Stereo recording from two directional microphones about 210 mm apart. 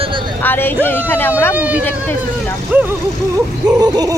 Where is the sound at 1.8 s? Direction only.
10° left (ahead or behind).